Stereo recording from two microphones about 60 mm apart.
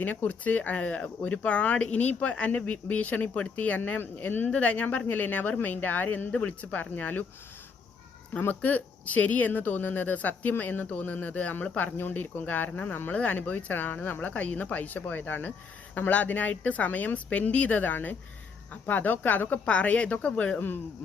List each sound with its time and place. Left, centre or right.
0.0 s speech: left
8.4 s speech: left